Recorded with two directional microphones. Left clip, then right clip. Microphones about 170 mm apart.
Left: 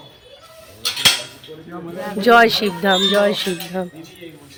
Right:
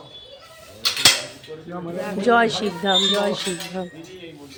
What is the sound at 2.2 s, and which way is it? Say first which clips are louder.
Speech: left 6 dB; 20° left (ahead or behind).